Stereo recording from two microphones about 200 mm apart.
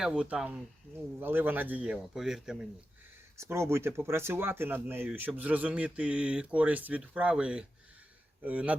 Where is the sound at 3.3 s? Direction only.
15° right (ahead or behind).